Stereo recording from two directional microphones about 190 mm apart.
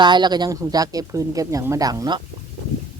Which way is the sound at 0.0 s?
25° right (ahead or behind).